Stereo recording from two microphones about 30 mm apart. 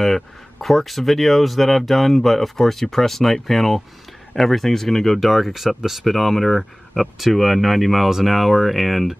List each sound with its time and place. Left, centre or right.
0.0 s speech: centre
5.2 s speech: centre
6.0 s speech: centre